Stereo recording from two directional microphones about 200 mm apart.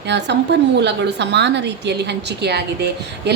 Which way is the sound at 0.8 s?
60° right (ahead or behind).